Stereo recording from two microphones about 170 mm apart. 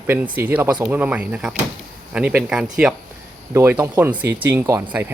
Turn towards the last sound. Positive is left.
turn(degrees=-20)  # may be behind; listen again after turning